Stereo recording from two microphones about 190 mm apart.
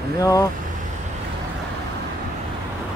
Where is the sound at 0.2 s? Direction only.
20° left (ahead or behind).